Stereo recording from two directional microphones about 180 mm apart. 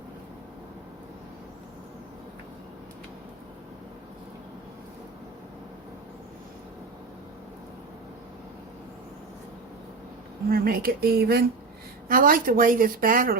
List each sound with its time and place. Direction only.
10.5 s a woman's voice: 55° right (ahead or behind)